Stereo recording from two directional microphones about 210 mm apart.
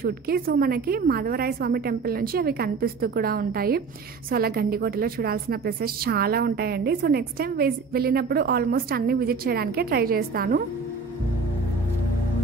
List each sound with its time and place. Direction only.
0.0 s a woman's voice: 45° right (ahead or behind)